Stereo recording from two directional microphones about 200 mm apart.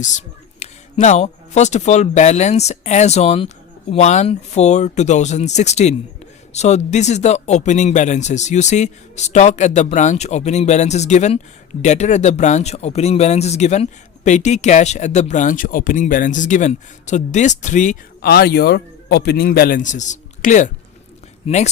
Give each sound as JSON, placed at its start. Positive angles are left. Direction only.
{"t": 0.6, "sound": "speech", "side_deg": 35}
{"t": 18.2, "sound": "a man's voice", "side_deg": 50}